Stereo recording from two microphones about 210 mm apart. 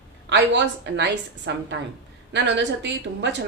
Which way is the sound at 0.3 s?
55° right (ahead or behind).